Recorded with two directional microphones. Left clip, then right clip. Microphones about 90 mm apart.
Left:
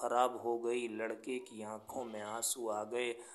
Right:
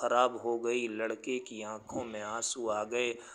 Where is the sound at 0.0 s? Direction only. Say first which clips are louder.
Right 5 dB; 25° right (ahead or behind).